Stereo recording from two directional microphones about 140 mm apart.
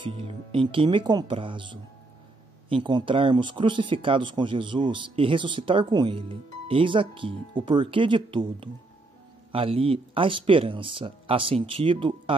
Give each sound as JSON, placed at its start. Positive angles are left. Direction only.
{"t": 0.0, "sound": "speech", "side_deg": -40}